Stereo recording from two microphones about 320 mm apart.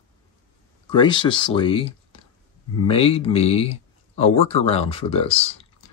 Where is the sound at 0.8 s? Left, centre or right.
Centre.